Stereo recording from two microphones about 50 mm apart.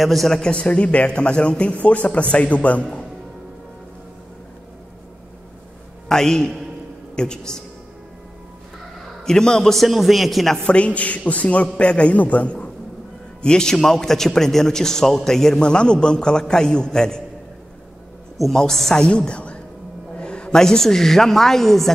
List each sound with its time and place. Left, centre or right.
0.0 s a man's voice: centre
0.5 s a man's voice: left
6.0 s a man's voice: centre
9.2 s a man's voice: centre
9.8 s a man's voice: centre
10.6 s a man's voice: left
13.4 s a man's voice: centre
18.5 s a man's voice: centre
19.0 s a woman's voice: left; by 21.9 s centre